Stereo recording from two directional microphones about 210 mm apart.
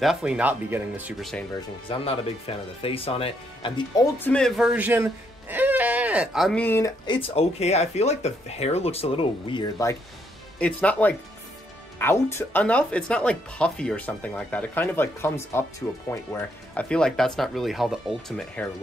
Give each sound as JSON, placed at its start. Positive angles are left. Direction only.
{"t": 0.0, "sound": "speech", "side_deg": -5}
{"t": 1.9, "sound": "speech", "side_deg": 25}
{"t": 7.1, "sound": "speech", "side_deg": 25}
{"t": 10.6, "sound": "speech", "side_deg": 5}